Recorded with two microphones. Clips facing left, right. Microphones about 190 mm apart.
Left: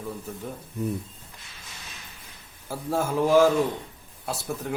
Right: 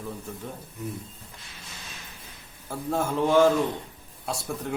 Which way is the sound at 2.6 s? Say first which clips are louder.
Left 1 dB; 5° left (ahead or behind).